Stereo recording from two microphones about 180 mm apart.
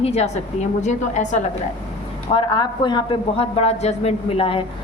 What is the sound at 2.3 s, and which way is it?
A man's voice, 25° left (ahead or behind).